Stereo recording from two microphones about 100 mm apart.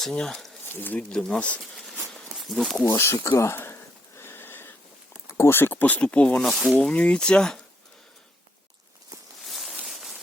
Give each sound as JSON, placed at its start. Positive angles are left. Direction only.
{"t": 0.0, "sound": "speech", "side_deg": 5}
{"t": 0.6, "sound": "speech", "side_deg": 20}
{"t": 1.1, "sound": "speech", "side_deg": 10}
{"t": 2.0, "sound": "a sound", "side_deg": 0}
{"t": 2.6, "sound": "speech", "side_deg": 0}
{"t": 3.0, "sound": "speech", "side_deg": 30}
{"t": 4.2, "sound": "horse", "side_deg": 25}
{"t": 5.3, "sound": "speech", "side_deg": 25}
{"t": 9.4, "sound": "a sound", "side_deg": 0}
{"t": 9.8, "sound": "rain on surface", "side_deg": -5}